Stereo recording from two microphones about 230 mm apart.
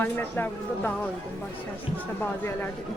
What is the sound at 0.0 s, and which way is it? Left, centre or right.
Speech, centre.